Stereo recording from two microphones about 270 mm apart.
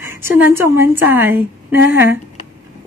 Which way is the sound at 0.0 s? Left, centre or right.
Centre.